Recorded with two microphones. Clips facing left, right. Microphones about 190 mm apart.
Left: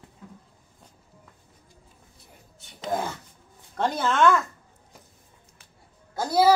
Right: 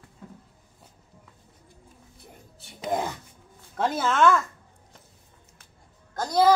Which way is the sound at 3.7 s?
5° right (ahead or behind).